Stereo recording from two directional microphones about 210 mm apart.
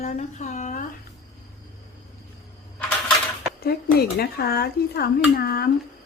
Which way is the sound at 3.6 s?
50° left (ahead or behind).